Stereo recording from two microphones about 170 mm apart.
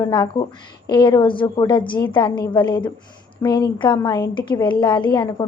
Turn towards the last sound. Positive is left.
turn(degrees=25)  # may be behind; listen again after turning